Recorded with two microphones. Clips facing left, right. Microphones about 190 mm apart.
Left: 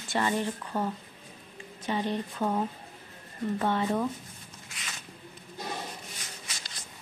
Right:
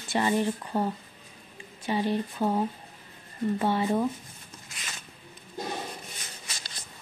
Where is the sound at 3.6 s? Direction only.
10° right (ahead or behind).